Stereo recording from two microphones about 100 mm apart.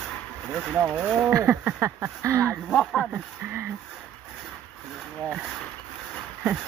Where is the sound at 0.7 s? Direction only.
15° right (ahead or behind).